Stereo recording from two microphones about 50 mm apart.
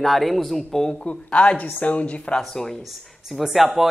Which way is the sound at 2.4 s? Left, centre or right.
Centre.